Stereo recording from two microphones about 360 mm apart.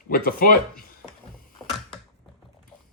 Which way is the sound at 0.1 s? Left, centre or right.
Left.